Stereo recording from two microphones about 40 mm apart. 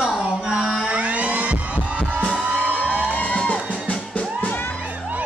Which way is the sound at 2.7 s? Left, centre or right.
Left.